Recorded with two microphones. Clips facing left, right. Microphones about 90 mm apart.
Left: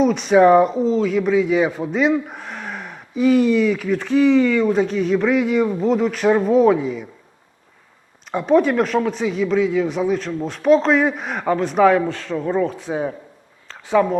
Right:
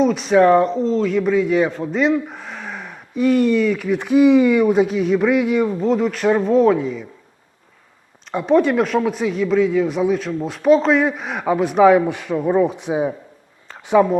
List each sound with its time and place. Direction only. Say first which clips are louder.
0.0 s a man's voice: left 1 dB; centre (ahead or behind)
3.9 s speech: right 3 dB; 15° right (ahead or behind); by 7.1 s 5° left (ahead or behind)
8.3 s speech: even; centre (ahead or behind)
13.7 s a sound: right 2 dB; 15° right (ahead or behind)